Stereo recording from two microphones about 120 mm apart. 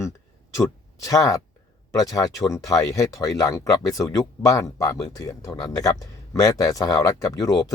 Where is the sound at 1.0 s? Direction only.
30° left (ahead or behind).